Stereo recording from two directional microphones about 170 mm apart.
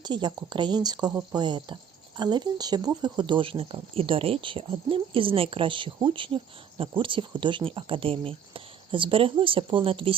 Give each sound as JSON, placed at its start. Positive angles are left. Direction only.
{"t": 0.0, "sound": "speech", "side_deg": -25}